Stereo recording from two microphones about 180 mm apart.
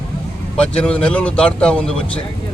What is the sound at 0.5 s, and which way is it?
Speech, 5° left (ahead or behind).